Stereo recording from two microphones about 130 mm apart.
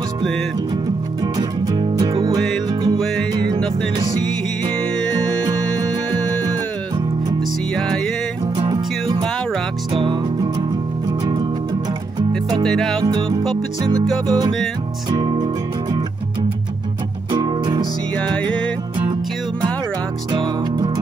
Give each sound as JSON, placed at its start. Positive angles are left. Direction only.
{"t": 1.8, "sound": "music", "side_deg": -35}
{"t": 2.3, "sound": "music", "side_deg": 0}
{"t": 5.0, "sound": "music", "side_deg": 5}
{"t": 8.5, "sound": "music", "side_deg": -40}
{"t": 12.6, "sound": "music", "side_deg": 5}
{"t": 13.0, "sound": "music", "side_deg": -30}
{"t": 17.3, "sound": "music", "side_deg": -35}